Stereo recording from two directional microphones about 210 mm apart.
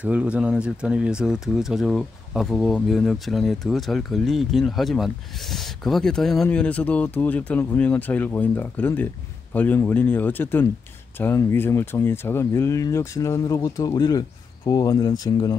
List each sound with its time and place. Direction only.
0.0 s speech: 5° right (ahead or behind); by 15.5 s 20° left (ahead or behind)